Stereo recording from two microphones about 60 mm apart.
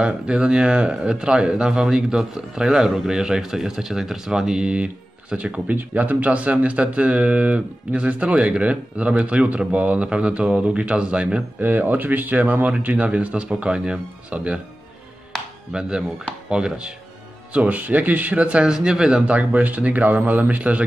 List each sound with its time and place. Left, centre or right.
0.0 s speech: centre
11.6 s speech: right
15.3 s music: centre
15.7 s speech: centre